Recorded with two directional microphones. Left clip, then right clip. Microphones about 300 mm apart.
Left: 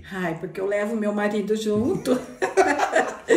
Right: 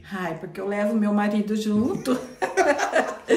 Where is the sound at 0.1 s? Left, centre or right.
Centre.